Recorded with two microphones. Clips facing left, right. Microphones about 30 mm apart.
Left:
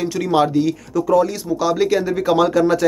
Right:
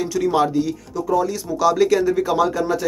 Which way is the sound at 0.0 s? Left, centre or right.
Left.